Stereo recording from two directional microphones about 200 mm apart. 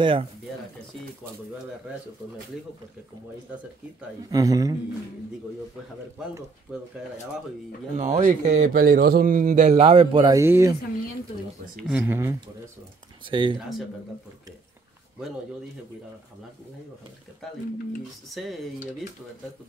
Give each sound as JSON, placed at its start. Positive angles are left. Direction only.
{"t": 0.0, "sound": "speech", "side_deg": -25}
{"t": 4.3, "sound": "speech", "side_deg": -15}
{"t": 7.9, "sound": "speech", "side_deg": -35}
{"t": 10.4, "sound": "speech", "side_deg": -10}
{"t": 11.9, "sound": "speech", "side_deg": -10}
{"t": 13.3, "sound": "speech", "side_deg": -25}
{"t": 18.3, "sound": "speech", "side_deg": 0}